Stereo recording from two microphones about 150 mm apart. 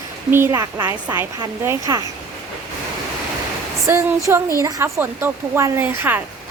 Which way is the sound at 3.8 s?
20° right (ahead or behind).